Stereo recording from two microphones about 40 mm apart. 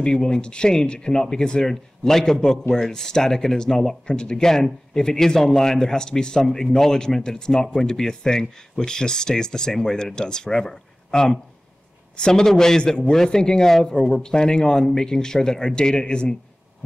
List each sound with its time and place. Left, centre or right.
0.0 s a man's voice: centre